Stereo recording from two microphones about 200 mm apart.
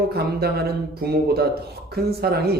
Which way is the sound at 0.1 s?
50° right (ahead or behind).